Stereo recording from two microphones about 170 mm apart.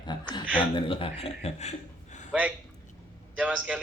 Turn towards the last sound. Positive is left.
turn(degrees=-10)  # may be behind; listen again after turning